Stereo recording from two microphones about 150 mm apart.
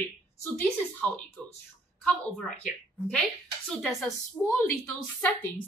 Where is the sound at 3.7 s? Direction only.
Centre (ahead or behind).